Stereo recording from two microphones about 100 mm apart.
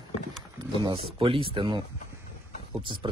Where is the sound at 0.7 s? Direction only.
45° right (ahead or behind).